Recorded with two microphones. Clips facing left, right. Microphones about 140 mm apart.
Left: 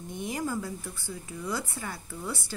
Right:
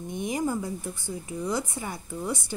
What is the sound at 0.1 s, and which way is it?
Speech, 20° right (ahead or behind).